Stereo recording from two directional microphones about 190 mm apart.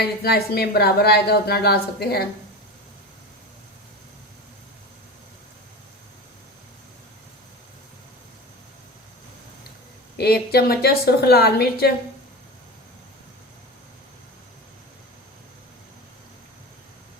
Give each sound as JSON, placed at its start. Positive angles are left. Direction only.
{"t": 0.0, "sound": "a woman's voice", "side_deg": 55}
{"t": 10.2, "sound": "a woman's voice", "side_deg": 55}